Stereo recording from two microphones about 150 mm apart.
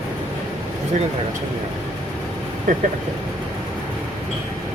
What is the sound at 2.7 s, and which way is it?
Speech, 60° right (ahead or behind).